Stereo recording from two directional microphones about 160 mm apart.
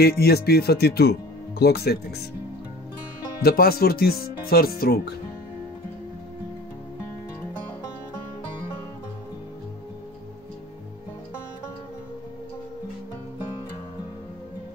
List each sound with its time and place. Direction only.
0.0 s speech: 80° left
3.4 s speech: 70° left (ahead or behind)